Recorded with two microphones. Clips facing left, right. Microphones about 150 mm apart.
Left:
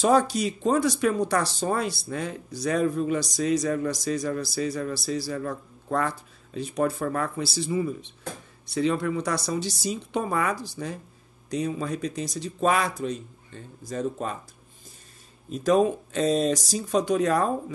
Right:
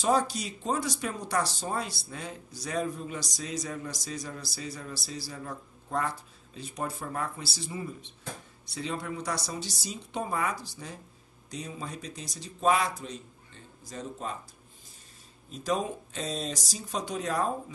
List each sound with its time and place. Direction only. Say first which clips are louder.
0.0 s speech: left 6 dB; 65° left (ahead or behind)
8.7 s speech: left 10 dB; 70° left (ahead or behind)
15.5 s speech: left 9 dB; 60° left (ahead or behind)